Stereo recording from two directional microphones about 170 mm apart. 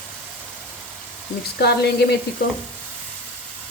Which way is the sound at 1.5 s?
75° left (ahead or behind).